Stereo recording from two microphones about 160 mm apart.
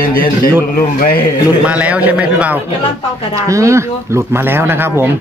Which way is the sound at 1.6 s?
10° right (ahead or behind).